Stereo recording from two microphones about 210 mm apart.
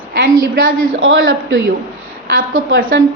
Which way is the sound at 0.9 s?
65° right (ahead or behind).